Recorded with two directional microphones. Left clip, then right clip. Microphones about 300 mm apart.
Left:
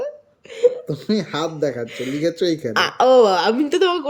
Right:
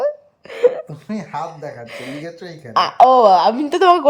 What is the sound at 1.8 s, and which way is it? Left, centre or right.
Speech, centre.